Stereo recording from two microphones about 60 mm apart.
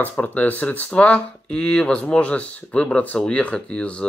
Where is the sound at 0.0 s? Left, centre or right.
Left.